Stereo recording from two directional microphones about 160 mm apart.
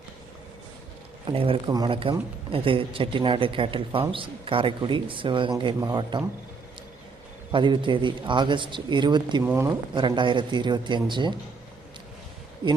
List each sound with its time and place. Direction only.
1.3 s speech: 35° right (ahead or behind)
7.5 s a man's voice: 30° right (ahead or behind)
9.4 s speech: 15° right (ahead or behind)
9.9 s a man's voice: 30° right (ahead or behind)
12.6 s a man's voice: 30° right (ahead or behind)